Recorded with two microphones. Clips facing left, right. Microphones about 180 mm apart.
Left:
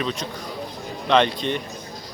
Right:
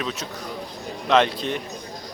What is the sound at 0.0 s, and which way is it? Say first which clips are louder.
Speech: left 2 dB; 5° right (ahead or behind).